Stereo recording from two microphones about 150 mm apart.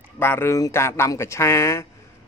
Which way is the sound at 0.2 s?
15° left (ahead or behind).